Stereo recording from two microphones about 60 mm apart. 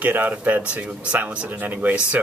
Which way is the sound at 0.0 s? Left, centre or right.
Right.